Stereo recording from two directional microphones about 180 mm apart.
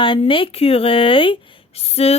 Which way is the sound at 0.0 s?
30° left (ahead or behind).